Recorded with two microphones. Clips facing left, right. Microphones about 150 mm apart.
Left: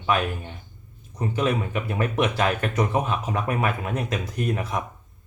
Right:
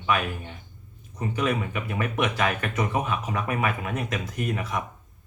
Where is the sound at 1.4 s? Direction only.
30° left (ahead or behind).